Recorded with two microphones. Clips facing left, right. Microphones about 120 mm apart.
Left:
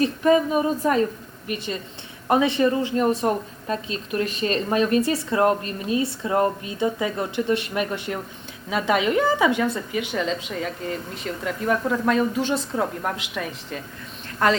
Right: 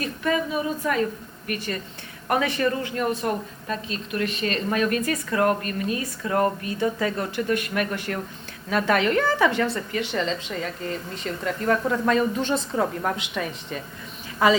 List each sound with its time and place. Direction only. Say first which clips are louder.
0.0 s a woman's voice: left 7 dB; 35° left (ahead or behind)
1.5 s a woman's voice: left 1 dB; 20° left (ahead or behind); by 14.6 s 5° right (ahead or behind)